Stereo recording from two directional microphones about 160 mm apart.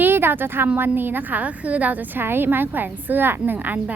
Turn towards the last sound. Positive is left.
turn(degrees=-10)  # may be behind; listen again after turning